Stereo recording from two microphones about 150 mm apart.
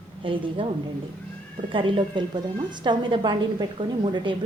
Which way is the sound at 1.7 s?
30° right (ahead or behind).